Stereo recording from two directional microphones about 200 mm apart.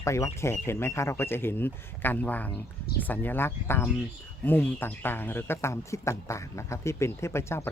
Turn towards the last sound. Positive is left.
turn(degrees=15)  # may be behind; listen again after turning